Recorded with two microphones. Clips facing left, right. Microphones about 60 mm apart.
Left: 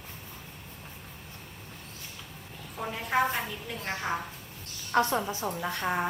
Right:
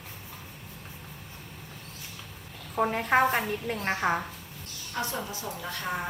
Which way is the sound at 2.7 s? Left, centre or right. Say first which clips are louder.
Right 5 dB; right.